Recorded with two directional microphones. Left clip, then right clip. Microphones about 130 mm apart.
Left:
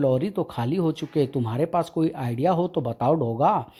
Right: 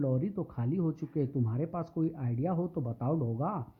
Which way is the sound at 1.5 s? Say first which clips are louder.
Left 13 dB; 35° left (ahead or behind).